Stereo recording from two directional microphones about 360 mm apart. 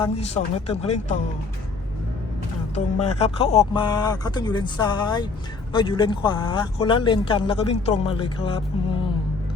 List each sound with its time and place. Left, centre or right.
0.0 s speech: centre
2.7 s speech: centre